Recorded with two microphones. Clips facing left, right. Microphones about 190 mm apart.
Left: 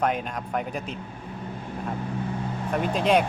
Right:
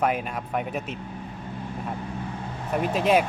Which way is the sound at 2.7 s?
5° right (ahead or behind).